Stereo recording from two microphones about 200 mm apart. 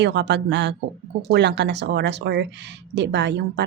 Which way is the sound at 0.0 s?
60° right (ahead or behind).